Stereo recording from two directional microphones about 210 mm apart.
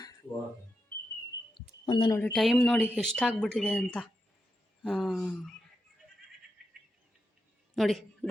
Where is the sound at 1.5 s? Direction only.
20° left (ahead or behind).